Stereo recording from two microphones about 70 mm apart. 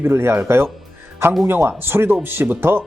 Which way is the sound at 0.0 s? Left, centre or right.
Right.